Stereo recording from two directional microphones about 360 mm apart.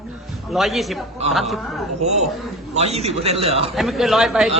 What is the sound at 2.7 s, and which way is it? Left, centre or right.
Speech, centre.